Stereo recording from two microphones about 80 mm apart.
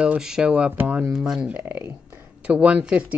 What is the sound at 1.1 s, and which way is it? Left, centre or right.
Speech, centre.